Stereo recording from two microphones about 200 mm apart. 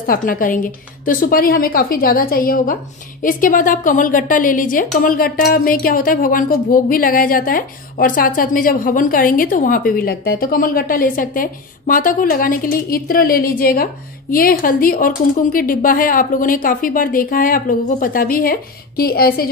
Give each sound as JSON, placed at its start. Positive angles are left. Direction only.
{"t": 0.0, "sound": "a woman's voice", "side_deg": 45}